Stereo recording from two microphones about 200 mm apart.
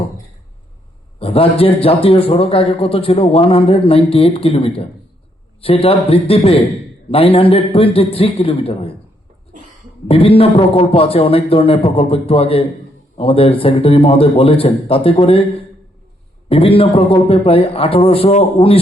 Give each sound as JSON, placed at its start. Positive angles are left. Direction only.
{"t": 1.2, "sound": "a man's voice", "side_deg": 30}
{"t": 10.1, "sound": "a man's voice", "side_deg": 30}